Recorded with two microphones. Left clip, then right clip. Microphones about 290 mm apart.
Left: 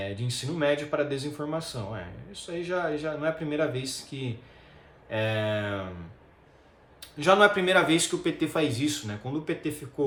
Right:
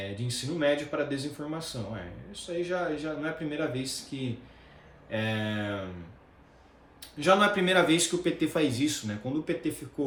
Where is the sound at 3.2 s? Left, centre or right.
Centre.